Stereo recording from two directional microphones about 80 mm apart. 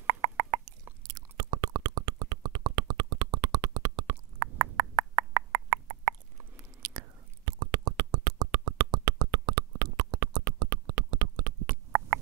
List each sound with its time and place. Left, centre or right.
0.0 s beatboxing: right
1.0 s a sound: right
6.8 s whispering: right